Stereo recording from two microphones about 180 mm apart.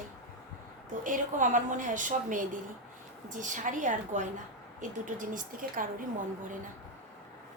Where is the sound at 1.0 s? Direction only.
45° right (ahead or behind).